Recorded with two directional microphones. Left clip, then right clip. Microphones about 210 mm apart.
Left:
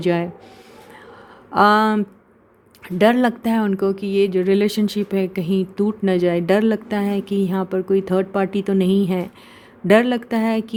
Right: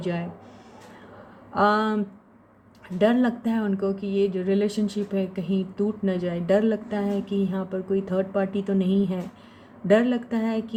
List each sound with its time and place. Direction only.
0.0 s speech: 50° left (ahead or behind)
1.5 s speech: 50° left (ahead or behind)